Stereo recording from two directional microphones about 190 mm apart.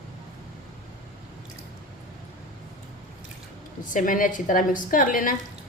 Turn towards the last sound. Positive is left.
turn(degrees=45)  # may be behind; listen again after turning